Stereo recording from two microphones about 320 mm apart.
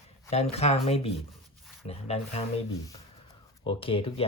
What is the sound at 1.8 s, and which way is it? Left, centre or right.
Speech, centre.